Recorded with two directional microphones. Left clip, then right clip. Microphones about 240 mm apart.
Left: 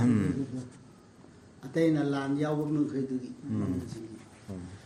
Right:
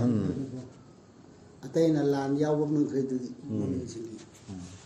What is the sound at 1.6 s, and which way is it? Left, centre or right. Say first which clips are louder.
Speech: right 2 dB; centre.